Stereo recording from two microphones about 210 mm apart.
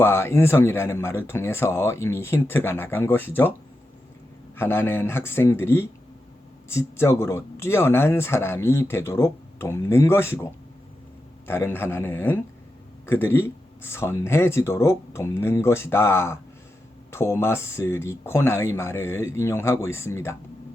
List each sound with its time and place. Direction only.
0.0 s speech: 10° left (ahead or behind)
4.5 s speech: 10° left (ahead or behind)